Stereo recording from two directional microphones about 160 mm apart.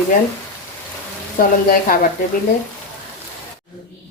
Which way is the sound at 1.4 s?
60° left (ahead or behind).